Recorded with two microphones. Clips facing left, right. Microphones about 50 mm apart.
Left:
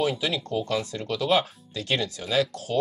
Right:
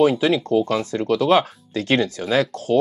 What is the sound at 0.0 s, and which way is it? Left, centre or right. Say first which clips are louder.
Speech: right 9 dB; right.